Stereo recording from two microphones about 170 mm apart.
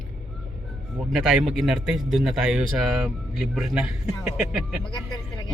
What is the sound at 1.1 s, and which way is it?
A man's voice, centre (ahead or behind).